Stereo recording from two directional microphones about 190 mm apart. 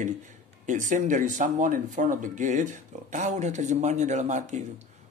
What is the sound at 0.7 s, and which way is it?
Speech, 40° right (ahead or behind).